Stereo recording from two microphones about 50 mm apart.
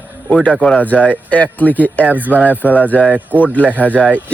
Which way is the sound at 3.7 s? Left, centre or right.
Left.